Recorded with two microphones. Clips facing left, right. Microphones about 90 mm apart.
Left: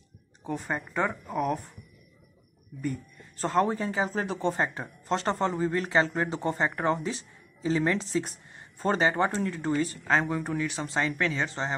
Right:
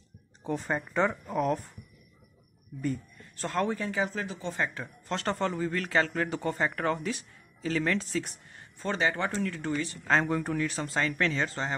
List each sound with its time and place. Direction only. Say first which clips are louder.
0.4 s speech: right 1 dB; 10° left (ahead or behind)
3.3 s speech: left 4 dB; 30° left (ahead or behind)
4.3 s speech: left 8 dB; 55° left (ahead or behind)
4.6 s speech: left 3 dB; 30° left (ahead or behind)
10.0 s speech: right 3 dB; 10° left (ahead or behind)